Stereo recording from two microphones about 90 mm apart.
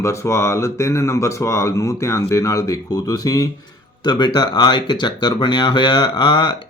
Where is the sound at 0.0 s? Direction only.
30° left (ahead or behind).